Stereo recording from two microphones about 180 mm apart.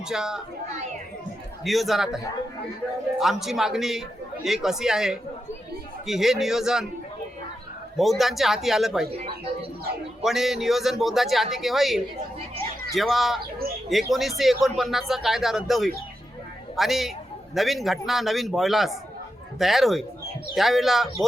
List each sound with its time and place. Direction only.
0.0 s a man's voice: 5° right (ahead or behind)
1.6 s a man's voice: centre (ahead or behind)
3.2 s a man's voice: centre (ahead or behind)
7.9 s a man's voice: centre (ahead or behind)
9.1 s speech: 35° right (ahead or behind)
10.2 s a man's voice: centre (ahead or behind)